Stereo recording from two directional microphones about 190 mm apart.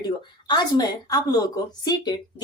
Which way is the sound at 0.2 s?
25° left (ahead or behind).